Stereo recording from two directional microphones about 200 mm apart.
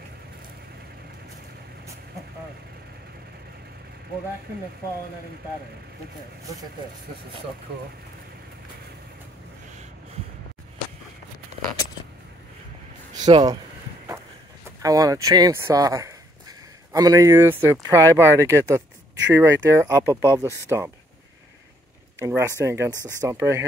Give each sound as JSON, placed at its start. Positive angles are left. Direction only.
{"t": 13.1, "sound": "speech", "side_deg": -20}
{"t": 14.8, "sound": "speech", "side_deg": -15}
{"t": 22.2, "sound": "speech", "side_deg": -10}